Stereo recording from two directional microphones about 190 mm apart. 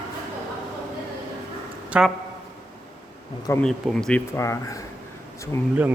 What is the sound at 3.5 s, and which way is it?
A man's voice, 5° left (ahead or behind).